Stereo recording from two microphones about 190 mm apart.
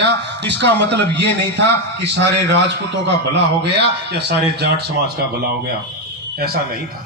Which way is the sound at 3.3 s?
60° right (ahead or behind).